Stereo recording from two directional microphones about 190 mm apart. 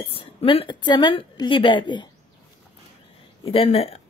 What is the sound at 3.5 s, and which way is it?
Speech, 30° left (ahead or behind).